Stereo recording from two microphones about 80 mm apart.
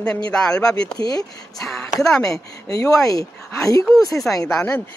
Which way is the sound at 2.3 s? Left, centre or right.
Left.